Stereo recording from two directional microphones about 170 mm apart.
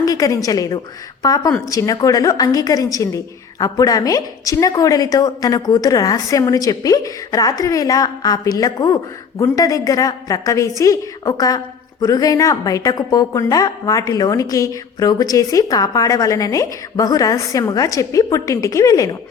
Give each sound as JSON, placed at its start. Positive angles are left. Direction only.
{"t": 0.0, "sound": "a woman's voice", "side_deg": 20}